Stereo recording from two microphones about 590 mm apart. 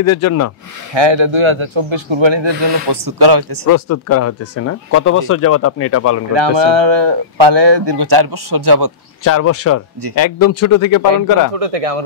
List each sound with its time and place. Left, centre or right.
0.0 s speech: left
0.9 s speech: right
3.6 s speech: left
6.3 s speech: right
9.2 s speech: left
11.5 s a man's voice: right